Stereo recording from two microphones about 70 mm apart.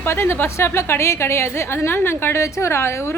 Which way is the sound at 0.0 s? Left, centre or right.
Left.